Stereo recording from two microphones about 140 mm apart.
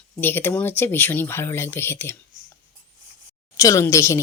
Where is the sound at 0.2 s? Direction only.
15° left (ahead or behind).